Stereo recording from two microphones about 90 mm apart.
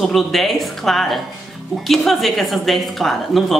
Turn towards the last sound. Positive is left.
turn(degrees=0)  # may be behind; listen again after turning